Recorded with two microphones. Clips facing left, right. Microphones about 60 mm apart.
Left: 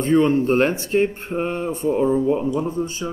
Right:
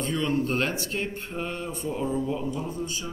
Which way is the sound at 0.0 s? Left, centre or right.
Left.